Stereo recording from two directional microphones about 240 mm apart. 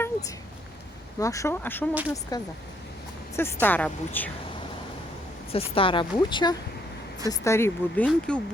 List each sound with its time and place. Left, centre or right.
1.2 s speech: centre
5.5 s a woman's voice: left; by 8.4 s centre